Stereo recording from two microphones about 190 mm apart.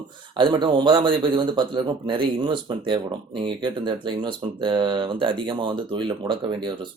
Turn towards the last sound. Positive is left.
turn(degrees=-25)  # may be behind; listen again after turning